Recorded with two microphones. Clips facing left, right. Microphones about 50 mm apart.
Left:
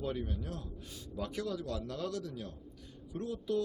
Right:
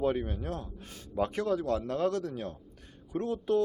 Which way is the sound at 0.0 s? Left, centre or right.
Right.